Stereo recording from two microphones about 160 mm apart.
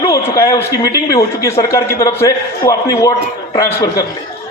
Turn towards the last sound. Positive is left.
turn(degrees=20)  # may be behind; listen again after turning